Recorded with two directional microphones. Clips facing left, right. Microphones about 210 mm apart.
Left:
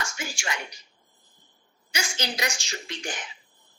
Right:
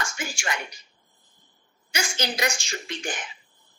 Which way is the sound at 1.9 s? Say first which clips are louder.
Right 3 dB; 50° right (ahead or behind).